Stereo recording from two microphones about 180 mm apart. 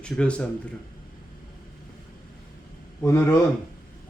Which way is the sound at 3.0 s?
15° left (ahead or behind).